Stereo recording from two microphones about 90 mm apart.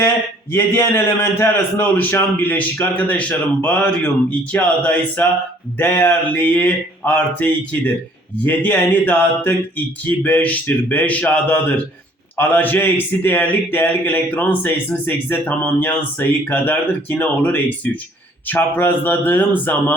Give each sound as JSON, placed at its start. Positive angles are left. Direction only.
{"t": 0.5, "sound": "a man's voice", "side_deg": 25}